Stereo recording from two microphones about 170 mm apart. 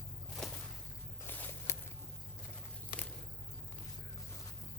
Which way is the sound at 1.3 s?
10° left (ahead or behind).